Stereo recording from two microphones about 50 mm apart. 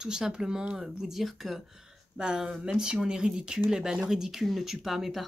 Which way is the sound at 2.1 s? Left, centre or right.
Centre.